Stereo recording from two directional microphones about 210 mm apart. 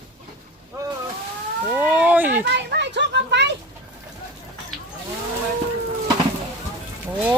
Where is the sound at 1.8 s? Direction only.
5° right (ahead or behind).